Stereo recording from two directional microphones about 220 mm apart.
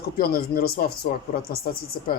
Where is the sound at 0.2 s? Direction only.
45° left (ahead or behind).